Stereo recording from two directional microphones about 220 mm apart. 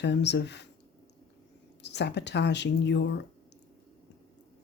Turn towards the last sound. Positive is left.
turn(degrees=50)  # may be behind; listen again after turning